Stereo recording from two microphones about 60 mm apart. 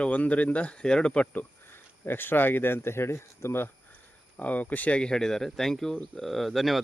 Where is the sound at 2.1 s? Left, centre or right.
Left.